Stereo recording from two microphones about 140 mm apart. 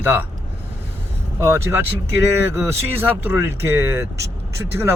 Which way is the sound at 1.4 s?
20° right (ahead or behind).